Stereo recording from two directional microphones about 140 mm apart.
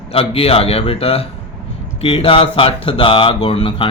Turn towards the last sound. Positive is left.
turn(degrees=40)  # may be behind; listen again after turning